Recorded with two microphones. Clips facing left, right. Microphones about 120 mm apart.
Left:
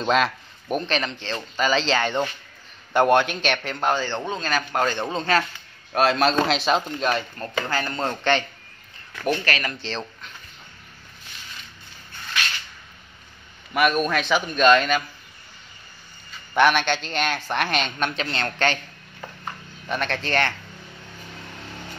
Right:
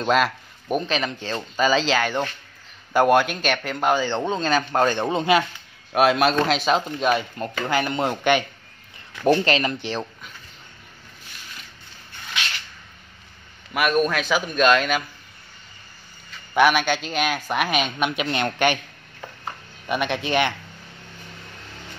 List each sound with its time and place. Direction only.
0.0 s a man's voice: centre (ahead or behind)
7.6 s a man's voice: 15° right (ahead or behind)
9.2 s speech: 25° right (ahead or behind)
13.7 s a man's voice: centre (ahead or behind)
16.5 s a man's voice: 5° right (ahead or behind)
19.4 s a sound: 10° right (ahead or behind)